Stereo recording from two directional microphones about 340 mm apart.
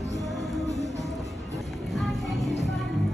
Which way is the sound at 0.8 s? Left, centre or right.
Left.